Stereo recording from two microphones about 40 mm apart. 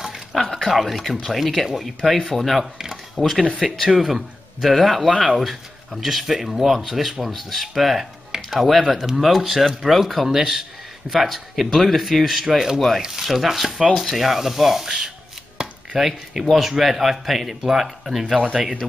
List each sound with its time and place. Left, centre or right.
0.0 s a sound: centre
0.4 s a sound: centre
1.3 s speech: centre
5.1 s speech: right
5.4 s speech: centre
15.5 s chopping: centre
16.0 s speech: centre